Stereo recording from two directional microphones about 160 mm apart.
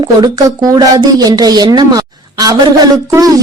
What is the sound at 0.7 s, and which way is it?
A woman's voice, 25° right (ahead or behind).